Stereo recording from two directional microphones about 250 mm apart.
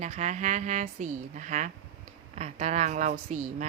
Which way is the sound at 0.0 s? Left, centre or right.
Right.